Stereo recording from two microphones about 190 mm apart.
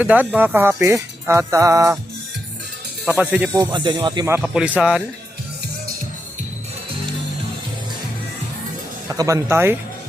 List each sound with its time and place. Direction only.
0.0 s music: 10° right (ahead or behind)
3.1 s music: 10° right (ahead or behind)
3.7 s speech: 25° right (ahead or behind)
4.4 s speech: 5° right (ahead or behind)
9.0 s music: 15° right (ahead or behind)